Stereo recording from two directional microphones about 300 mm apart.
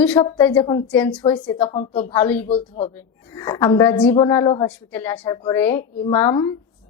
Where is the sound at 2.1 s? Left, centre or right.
Centre.